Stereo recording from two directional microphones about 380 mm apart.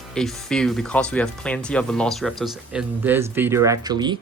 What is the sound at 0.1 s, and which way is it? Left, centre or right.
Speech, centre.